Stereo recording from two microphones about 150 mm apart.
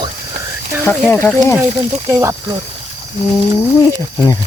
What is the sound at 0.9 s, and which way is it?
Speech, 10° left (ahead or behind).